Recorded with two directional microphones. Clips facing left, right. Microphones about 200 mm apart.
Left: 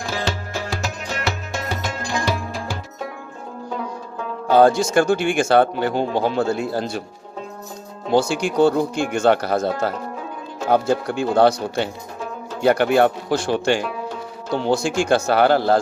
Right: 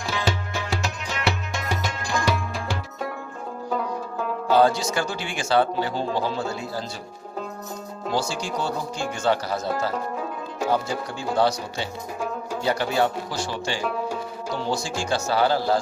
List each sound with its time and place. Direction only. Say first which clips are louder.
0.0 s music: left 1 dB; 45° left (ahead or behind)
4.5 s speech: left 6 dB; 50° left (ahead or behind)
8.1 s speech: left 9 dB; 60° left (ahead or behind)